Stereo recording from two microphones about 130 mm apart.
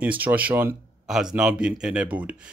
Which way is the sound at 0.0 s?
15° right (ahead or behind).